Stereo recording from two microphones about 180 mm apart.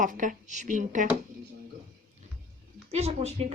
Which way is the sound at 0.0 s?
45° right (ahead or behind).